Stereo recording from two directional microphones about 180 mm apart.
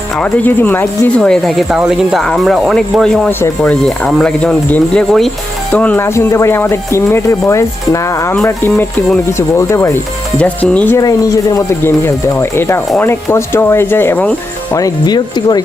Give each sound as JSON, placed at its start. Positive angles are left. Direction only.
{"t": 0.2, "sound": "speech", "side_deg": 10}
{"t": 14.8, "sound": "speech", "side_deg": 20}